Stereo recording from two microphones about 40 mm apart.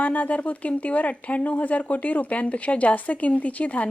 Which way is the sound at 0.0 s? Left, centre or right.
Left.